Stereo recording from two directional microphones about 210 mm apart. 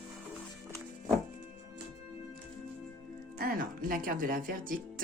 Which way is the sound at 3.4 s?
40° right (ahead or behind).